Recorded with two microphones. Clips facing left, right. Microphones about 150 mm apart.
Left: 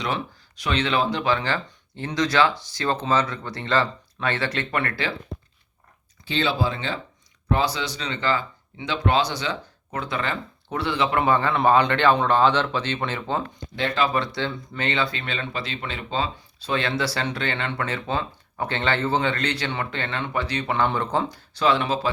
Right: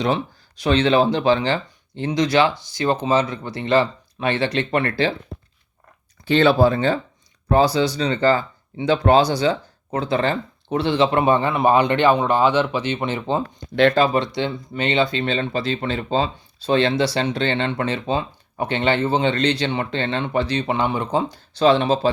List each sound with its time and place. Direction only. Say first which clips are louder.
0.6 s speech: right 7 dB; 30° right (ahead or behind)
6.2 s speech: right 9 dB; 60° right (ahead or behind); by 11.2 s 30° right (ahead or behind)
11.2 s speech: right 3 dB; 15° right (ahead or behind)
21.6 s speech: right 6 dB; 30° right (ahead or behind)